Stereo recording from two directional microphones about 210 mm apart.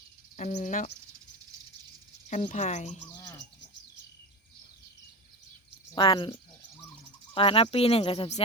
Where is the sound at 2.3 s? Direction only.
35° left (ahead or behind).